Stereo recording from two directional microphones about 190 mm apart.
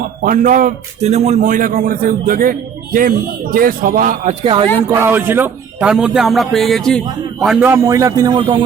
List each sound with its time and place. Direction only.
0.2 s speech: 45° right (ahead or behind)
4.9 s a man's voice: 10° right (ahead or behind)